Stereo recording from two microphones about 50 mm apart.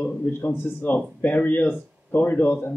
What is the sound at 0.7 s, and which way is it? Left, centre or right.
Speech, left.